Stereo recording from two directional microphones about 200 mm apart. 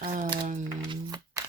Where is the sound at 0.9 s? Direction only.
20° right (ahead or behind).